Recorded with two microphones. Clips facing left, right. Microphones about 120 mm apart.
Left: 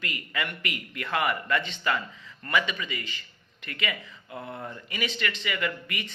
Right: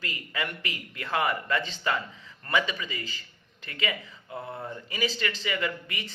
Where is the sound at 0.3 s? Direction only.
30° right (ahead or behind).